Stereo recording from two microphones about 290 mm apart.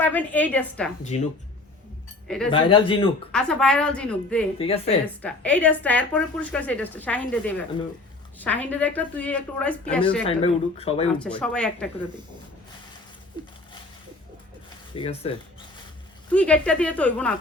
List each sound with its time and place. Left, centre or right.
0.0 s a woman's voice: centre
1.0 s speech: left
2.2 s speech: centre
2.5 s a man's voice: centre
3.3 s a woman's voice: centre
4.5 s speech: centre
5.2 s a woman's voice: centre
10.2 s speech: centre
11.2 s a woman's voice: centre
14.9 s speech: centre
16.3 s a woman's voice: centre